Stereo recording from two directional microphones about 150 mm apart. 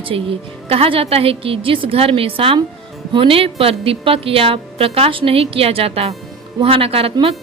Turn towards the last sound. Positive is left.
turn(degrees=-40)  # may be behind; listen again after turning